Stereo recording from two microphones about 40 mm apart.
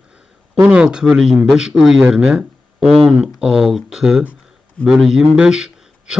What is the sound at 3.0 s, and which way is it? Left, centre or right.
Speech, centre.